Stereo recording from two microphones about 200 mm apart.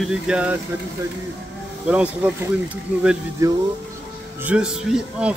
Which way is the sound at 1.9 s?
5° right (ahead or behind).